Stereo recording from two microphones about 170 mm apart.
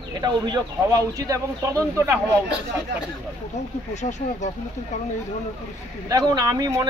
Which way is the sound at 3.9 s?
45° left (ahead or behind).